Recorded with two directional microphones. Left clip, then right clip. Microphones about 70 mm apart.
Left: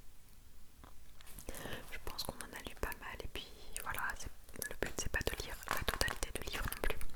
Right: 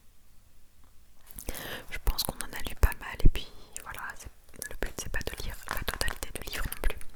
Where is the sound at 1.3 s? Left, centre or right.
Right.